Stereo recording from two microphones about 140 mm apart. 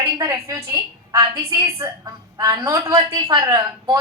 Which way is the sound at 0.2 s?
20° right (ahead or behind).